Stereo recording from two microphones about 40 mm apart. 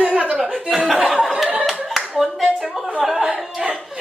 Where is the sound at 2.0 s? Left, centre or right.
Centre.